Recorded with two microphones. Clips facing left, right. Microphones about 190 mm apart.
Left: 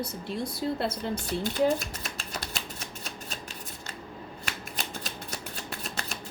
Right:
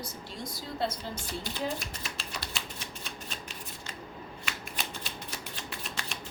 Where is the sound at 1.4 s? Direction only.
45° left (ahead or behind).